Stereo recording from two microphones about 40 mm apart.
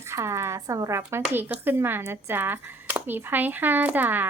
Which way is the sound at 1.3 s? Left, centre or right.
Right.